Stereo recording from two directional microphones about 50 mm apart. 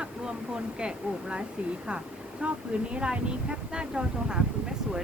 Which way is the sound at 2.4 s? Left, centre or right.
Right.